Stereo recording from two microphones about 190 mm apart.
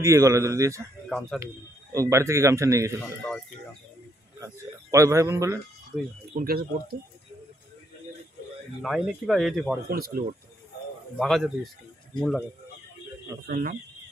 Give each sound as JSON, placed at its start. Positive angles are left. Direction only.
{"t": 0.0, "sound": "a man's voice", "side_deg": -15}
{"t": 1.0, "sound": "speech", "side_deg": 0}
{"t": 1.4, "sound": "a man's voice", "side_deg": -15}
{"t": 4.9, "sound": "a man's voice", "side_deg": -15}
{"t": 6.3, "sound": "speech", "side_deg": -55}
{"t": 8.8, "sound": "speech", "side_deg": 0}
{"t": 9.8, "sound": "speech", "side_deg": -50}
{"t": 11.1, "sound": "speech", "side_deg": 0}
{"t": 13.5, "sound": "speech", "side_deg": -45}